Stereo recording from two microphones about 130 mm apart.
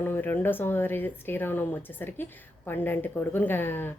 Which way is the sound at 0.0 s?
15° left (ahead or behind).